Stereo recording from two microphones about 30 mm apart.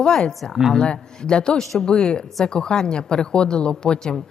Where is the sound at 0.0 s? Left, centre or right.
Left.